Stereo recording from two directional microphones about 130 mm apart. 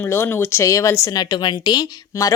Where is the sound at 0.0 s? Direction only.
15° left (ahead or behind).